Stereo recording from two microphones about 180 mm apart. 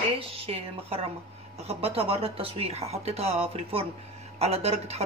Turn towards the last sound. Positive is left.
turn(degrees=-35)  # may be behind; listen again after turning